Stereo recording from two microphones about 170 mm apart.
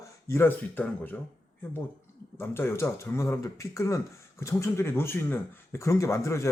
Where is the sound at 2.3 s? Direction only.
15° left (ahead or behind).